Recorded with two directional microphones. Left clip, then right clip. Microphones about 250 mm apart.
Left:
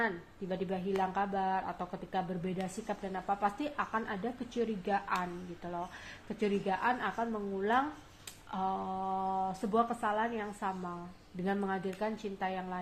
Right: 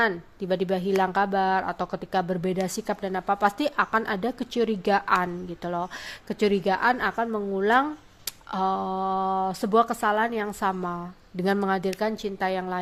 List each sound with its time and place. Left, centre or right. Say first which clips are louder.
0.0 s speech: right 10 dB; right